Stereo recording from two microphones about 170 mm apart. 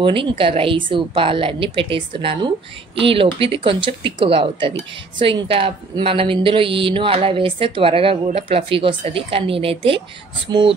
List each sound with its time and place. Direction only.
0.0 s speech: 30° right (ahead or behind)